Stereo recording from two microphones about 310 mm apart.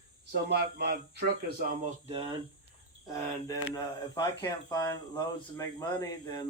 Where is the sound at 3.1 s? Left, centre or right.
Centre.